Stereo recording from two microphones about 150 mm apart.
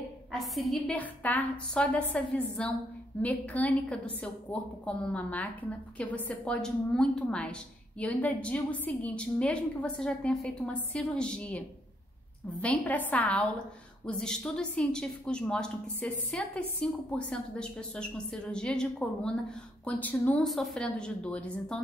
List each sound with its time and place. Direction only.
0.3 s a woman's voice: centre (ahead or behind)
12.6 s a woman's voice: 10° left (ahead or behind)